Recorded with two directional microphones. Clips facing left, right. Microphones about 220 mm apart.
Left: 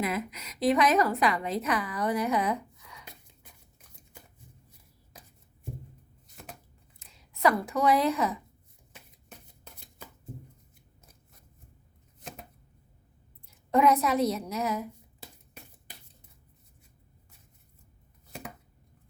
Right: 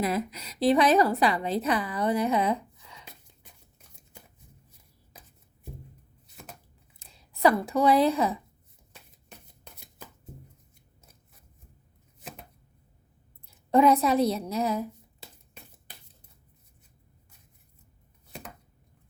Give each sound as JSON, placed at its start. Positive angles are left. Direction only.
{"t": 0.0, "sound": "a woman's voice", "side_deg": -35}
{"t": 7.0, "sound": "speech", "side_deg": -30}
{"t": 13.7, "sound": "a woman's voice", "side_deg": -30}
{"t": 18.3, "sound": "chopping", "side_deg": 0}